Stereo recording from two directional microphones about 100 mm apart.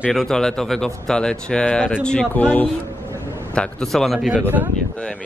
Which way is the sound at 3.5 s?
5° left (ahead or behind).